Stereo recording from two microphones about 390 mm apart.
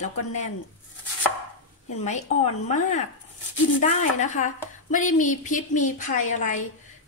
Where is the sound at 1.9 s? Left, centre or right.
Centre.